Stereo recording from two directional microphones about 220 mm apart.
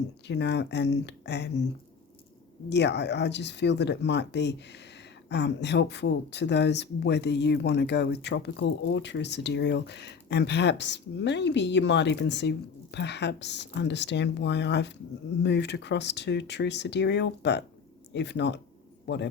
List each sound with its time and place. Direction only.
0.3 s speech: 50° left (ahead or behind)
2.6 s a man's voice: 50° left (ahead or behind)